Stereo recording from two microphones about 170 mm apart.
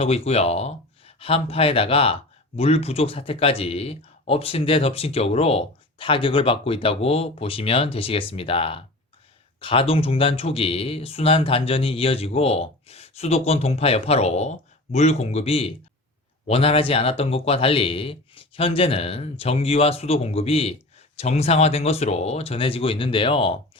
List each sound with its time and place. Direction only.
0.0 s speech: 35° left (ahead or behind)